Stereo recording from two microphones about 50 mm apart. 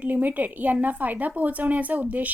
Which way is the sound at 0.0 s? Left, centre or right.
Right.